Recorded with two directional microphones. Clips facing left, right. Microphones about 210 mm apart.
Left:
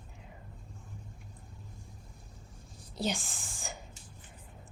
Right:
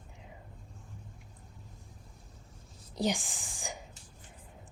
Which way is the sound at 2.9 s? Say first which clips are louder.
Right 3 dB; 15° right (ahead or behind).